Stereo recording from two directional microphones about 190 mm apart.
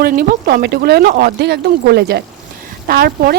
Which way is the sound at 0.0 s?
55° right (ahead or behind).